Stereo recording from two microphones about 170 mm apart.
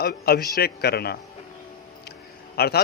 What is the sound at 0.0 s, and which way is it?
A man's voice, 65° left (ahead or behind).